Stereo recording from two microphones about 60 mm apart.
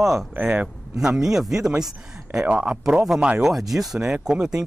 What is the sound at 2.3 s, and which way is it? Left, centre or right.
Speech, centre.